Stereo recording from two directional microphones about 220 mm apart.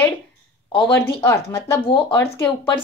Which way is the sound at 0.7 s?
25° left (ahead or behind).